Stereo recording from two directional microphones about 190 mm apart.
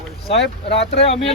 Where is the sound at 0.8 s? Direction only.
30° left (ahead or behind).